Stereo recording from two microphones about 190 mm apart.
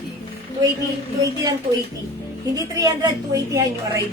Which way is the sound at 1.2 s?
20° right (ahead or behind).